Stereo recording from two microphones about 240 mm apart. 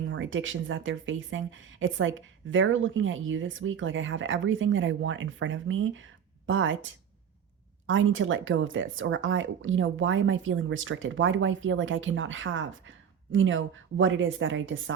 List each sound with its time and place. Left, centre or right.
0.0 s speech: right
7.9 s speech: right